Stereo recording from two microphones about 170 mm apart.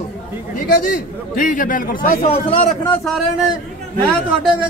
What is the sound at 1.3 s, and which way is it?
Speech, 55° left (ahead or behind).